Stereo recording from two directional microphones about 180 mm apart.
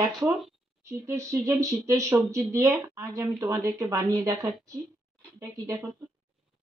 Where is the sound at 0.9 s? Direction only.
15° right (ahead or behind).